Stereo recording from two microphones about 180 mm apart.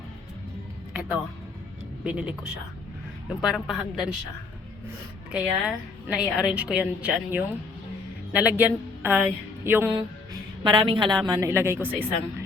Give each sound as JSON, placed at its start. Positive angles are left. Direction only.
{"t": 0.9, "sound": "music", "side_deg": -5}
{"t": 2.0, "sound": "a woman's voice", "side_deg": -5}
{"t": 3.4, "sound": "a woman's voice", "side_deg": 0}
{"t": 5.3, "sound": "a woman's voice", "side_deg": -5}
{"t": 10.6, "sound": "a woman's voice", "side_deg": -25}
{"t": 11.3, "sound": "speech", "side_deg": -15}